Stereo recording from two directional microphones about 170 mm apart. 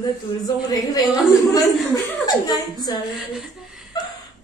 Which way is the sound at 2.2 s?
25° left (ahead or behind).